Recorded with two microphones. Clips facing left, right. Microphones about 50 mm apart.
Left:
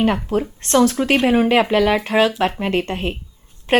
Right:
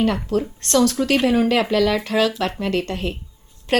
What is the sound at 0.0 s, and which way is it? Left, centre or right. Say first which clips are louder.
A woman's voice: left 2 dB; left.